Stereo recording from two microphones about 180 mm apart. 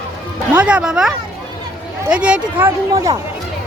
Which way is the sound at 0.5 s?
10° right (ahead or behind).